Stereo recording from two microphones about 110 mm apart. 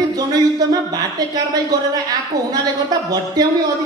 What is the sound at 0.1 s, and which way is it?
Speech, 35° right (ahead or behind).